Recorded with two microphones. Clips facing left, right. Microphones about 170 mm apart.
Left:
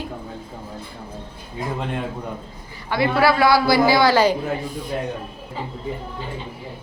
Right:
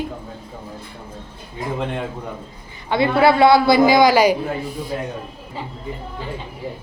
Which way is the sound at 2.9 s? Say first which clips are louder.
Right 3 dB; 25° right (ahead or behind).